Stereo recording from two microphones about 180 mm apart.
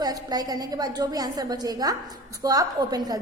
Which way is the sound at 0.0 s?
20° right (ahead or behind).